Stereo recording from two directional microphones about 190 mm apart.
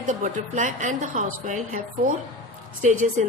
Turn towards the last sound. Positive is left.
turn(degrees=-40)  # may be behind; listen again after turning